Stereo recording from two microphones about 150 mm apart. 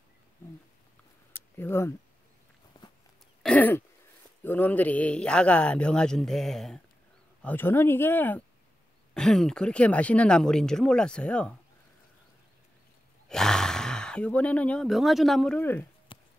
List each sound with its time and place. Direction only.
1.3 s a sound: 15° left (ahead or behind)
3.4 s throat clearing: 10° left (ahead or behind)
4.5 s a man's voice: 10° left (ahead or behind)
7.4 s a man's voice: 15° left (ahead or behind)
13.3 s speech: 5° left (ahead or behind)
16.1 s a sound: 35° left (ahead or behind)